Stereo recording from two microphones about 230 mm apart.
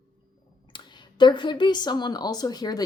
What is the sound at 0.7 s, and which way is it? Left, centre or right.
Speech, centre.